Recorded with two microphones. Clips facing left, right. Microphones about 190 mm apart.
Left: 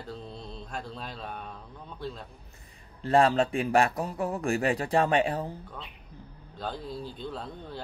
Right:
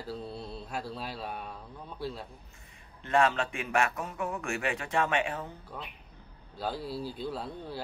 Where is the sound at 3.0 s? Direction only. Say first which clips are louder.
Left 4 dB; 35° left (ahead or behind).